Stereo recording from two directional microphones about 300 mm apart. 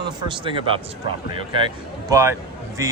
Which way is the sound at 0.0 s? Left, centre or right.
Centre.